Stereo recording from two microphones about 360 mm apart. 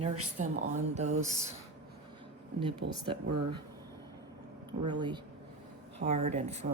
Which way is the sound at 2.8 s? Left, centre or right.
Right.